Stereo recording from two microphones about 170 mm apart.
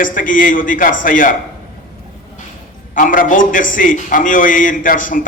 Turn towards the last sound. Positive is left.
turn(degrees=50)  # may be behind; listen again after turning